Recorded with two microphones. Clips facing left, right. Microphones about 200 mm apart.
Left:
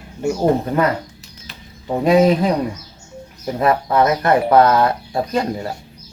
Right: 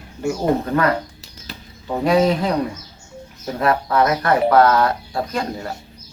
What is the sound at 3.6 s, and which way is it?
Speech, 20° left (ahead or behind).